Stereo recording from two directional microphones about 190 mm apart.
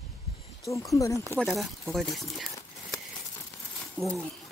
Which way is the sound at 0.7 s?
15° left (ahead or behind).